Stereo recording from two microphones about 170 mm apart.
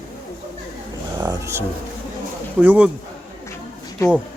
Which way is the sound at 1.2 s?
15° right (ahead or behind).